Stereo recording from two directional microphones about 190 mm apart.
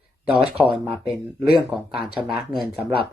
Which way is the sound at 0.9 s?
10° right (ahead or behind).